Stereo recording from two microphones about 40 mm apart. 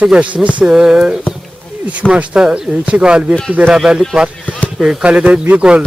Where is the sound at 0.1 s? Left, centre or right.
Right.